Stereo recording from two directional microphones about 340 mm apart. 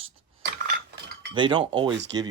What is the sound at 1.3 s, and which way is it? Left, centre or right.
Speech, centre.